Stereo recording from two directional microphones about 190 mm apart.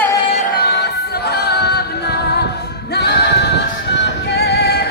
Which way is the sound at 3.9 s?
60° left (ahead or behind).